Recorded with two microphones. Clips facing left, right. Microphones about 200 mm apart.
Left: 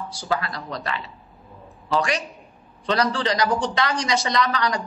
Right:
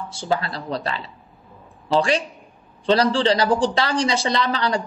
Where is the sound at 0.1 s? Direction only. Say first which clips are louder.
Right 3 dB; 25° right (ahead or behind).